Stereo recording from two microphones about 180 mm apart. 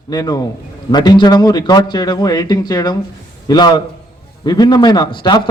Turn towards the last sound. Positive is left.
turn(degrees=25)  # may be behind; listen again after turning